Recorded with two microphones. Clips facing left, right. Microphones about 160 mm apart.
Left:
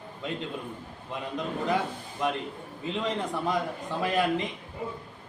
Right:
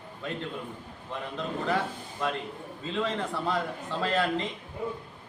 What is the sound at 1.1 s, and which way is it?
A man's voice, 15° left (ahead or behind).